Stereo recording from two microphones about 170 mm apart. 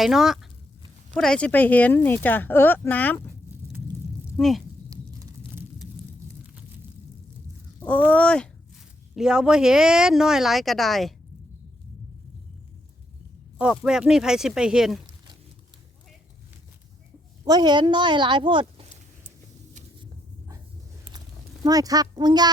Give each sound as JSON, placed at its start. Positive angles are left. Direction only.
{"t": 0.0, "sound": "speech", "side_deg": -5}
{"t": 4.4, "sound": "speech", "side_deg": 0}
{"t": 8.0, "sound": "speech", "side_deg": 10}
{"t": 9.1, "sound": "speech", "side_deg": -5}
{"t": 13.6, "sound": "speech", "side_deg": -5}
{"t": 17.4, "sound": "speech", "side_deg": -25}
{"t": 21.6, "sound": "speech", "side_deg": -20}